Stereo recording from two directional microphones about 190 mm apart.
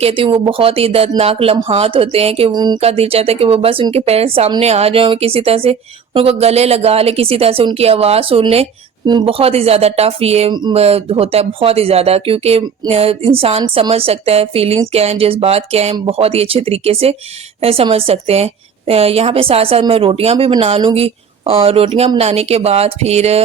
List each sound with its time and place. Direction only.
0.0 s a woman's voice: 30° right (ahead or behind)